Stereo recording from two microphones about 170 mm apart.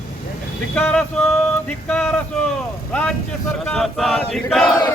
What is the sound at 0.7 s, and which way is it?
Mantra, 10° left (ahead or behind).